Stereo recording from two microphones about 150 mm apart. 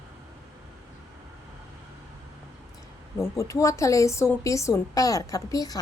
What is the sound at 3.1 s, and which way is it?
A woman's voice, 20° left (ahead or behind).